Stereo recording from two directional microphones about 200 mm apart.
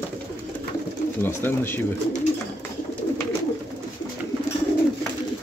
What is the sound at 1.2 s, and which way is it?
Speech, 10° left (ahead or behind).